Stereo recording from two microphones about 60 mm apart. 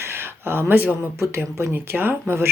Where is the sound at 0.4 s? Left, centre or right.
Right.